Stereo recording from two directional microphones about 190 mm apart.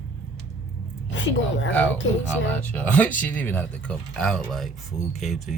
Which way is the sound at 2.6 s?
10° left (ahead or behind).